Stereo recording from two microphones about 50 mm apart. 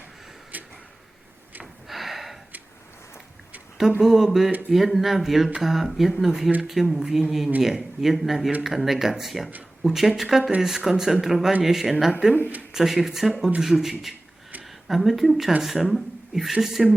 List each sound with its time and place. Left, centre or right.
0.5 s a sound: right
1.9 s gasp: centre
4.0 s speech: centre